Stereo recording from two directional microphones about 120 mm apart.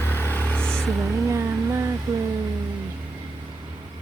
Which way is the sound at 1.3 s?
25° right (ahead or behind).